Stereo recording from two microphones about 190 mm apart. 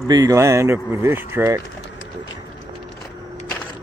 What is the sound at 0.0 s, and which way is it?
Speech, 20° right (ahead or behind).